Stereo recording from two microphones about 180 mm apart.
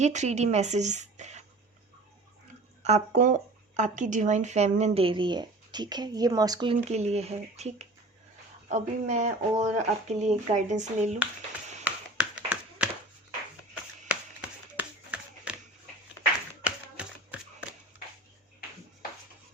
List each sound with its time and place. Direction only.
0.0 s a woman's voice: 40° right (ahead or behind)
2.8 s speech: 40° right (ahead or behind); by 6.7 s 25° right (ahead or behind)
6.9 s speech: 35° right (ahead or behind)
11.9 s tap: 10° right (ahead or behind)
14.1 s a sound: 5° right (ahead or behind)
16.6 s shuffling cards: 5° right (ahead or behind)